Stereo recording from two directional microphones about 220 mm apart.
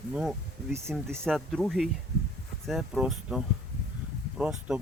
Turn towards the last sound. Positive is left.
turn(degrees=-5)  # may be behind; listen again after turning